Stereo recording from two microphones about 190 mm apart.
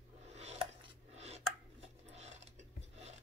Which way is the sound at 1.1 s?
35° right (ahead or behind).